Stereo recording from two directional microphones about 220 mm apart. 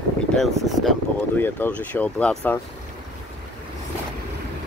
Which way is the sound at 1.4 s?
10° left (ahead or behind).